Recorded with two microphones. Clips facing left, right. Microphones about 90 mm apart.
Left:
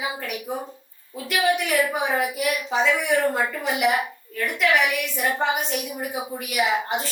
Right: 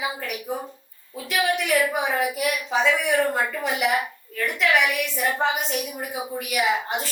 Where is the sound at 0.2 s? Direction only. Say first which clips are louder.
Even; centre (ahead or behind).